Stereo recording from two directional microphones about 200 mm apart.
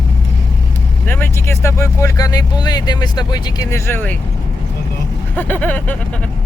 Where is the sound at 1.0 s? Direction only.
10° left (ahead or behind).